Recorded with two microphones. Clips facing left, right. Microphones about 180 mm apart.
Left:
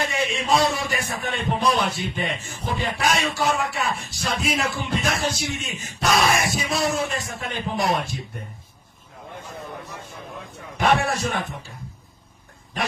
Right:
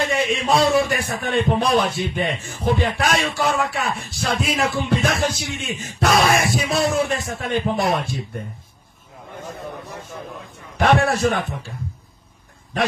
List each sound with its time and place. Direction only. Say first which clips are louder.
0.0 s speech: right 4 dB; 60° right (ahead or behind)
11.0 s a man's voice: right 6 dB; 55° right (ahead or behind)